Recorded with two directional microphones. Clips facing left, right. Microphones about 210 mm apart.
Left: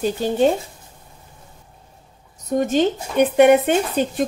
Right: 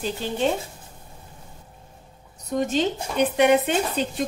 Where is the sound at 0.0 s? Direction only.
45° left (ahead or behind).